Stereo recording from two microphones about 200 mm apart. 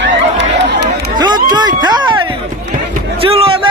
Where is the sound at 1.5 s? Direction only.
20° right (ahead or behind).